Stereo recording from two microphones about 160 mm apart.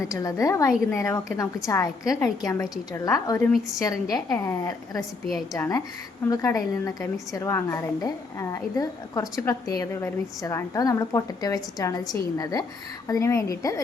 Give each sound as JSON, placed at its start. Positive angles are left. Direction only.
{"t": 0.0, "sound": "a woman's voice", "side_deg": 20}